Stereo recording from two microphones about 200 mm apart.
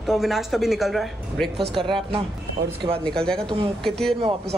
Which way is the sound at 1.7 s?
25° right (ahead or behind).